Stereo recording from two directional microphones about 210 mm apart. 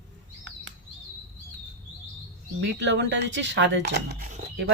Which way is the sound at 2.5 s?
55° right (ahead or behind).